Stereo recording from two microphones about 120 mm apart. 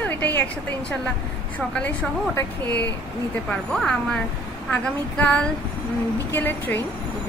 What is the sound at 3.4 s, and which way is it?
A woman's voice, 5° left (ahead or behind).